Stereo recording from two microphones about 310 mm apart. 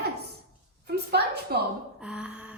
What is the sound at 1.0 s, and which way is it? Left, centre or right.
Speech, right.